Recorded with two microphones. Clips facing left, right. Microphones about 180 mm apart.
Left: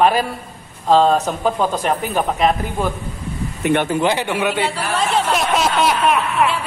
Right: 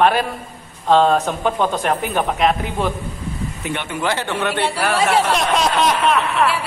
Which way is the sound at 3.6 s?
60° left (ahead or behind).